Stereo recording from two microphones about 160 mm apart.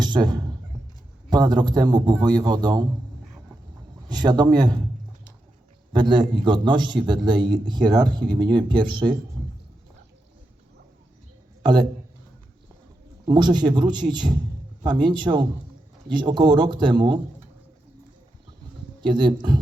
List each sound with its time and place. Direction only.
0.0 s a sound: 25° right (ahead or behind)
1.3 s a man's voice: 25° right (ahead or behind)
4.1 s a man's voice: 25° right (ahead or behind)
5.9 s a man's voice: 30° right (ahead or behind)
11.6 s a man's voice: 25° right (ahead or behind)
13.2 s a man's voice: 25° right (ahead or behind)
19.0 s a man's voice: 30° right (ahead or behind)